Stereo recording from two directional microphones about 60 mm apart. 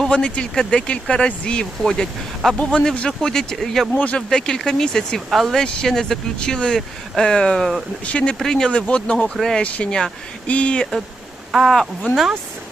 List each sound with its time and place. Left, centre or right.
0.1 s speech: centre
2.6 s speech: left
3.2 s speech: centre
4.0 s speech: left
4.4 s speech: centre
8.4 s speech: centre
9.6 s speech: left
11.5 s speech: centre